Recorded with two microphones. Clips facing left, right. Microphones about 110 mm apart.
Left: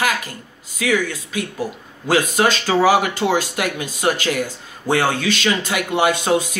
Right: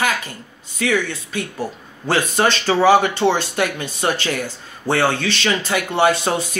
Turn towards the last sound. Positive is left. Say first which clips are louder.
# left 1 dB
turn(degrees=10)  # may be behind; listen again after turning